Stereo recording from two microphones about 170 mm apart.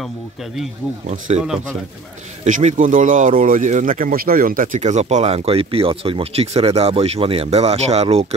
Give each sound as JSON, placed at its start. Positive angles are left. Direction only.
{"t": 1.0, "sound": "speech", "side_deg": -45}
{"t": 2.4, "sound": "speech", "side_deg": -50}